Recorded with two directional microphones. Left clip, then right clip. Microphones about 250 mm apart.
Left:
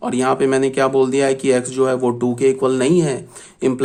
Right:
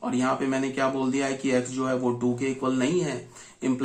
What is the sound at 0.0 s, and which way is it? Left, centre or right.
Speech, left.